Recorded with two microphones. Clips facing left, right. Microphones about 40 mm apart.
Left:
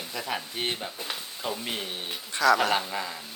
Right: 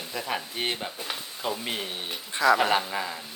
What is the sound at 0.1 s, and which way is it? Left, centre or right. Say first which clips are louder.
Speech: right 2 dB; centre.